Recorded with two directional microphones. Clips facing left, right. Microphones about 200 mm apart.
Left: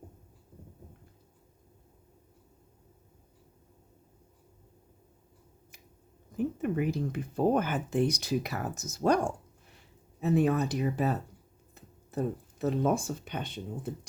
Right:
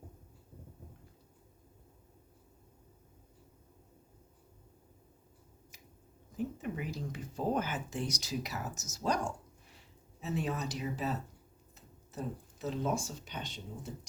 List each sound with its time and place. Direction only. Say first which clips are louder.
6.3 s speech: left 7 dB; 55° left (ahead or behind)